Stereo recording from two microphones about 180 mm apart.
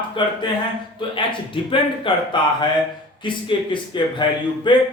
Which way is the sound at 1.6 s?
25° left (ahead or behind).